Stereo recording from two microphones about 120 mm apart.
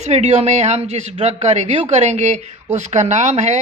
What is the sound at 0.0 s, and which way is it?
Speech, 70° right (ahead or behind).